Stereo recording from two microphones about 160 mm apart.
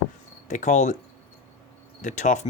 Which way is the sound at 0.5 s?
50° left (ahead or behind).